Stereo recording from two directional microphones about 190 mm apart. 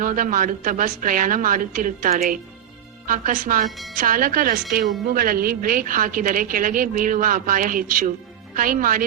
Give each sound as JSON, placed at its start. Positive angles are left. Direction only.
{"t": 0.0, "sound": "a woman's voice", "side_deg": -45}
{"t": 3.7, "sound": "speech", "side_deg": 0}
{"t": 4.0, "sound": "a woman's voice", "side_deg": -50}